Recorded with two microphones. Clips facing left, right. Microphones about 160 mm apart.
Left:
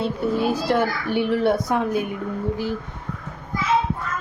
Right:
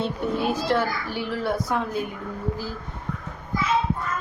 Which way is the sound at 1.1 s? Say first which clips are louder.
Left 8 dB; 60° left (ahead or behind).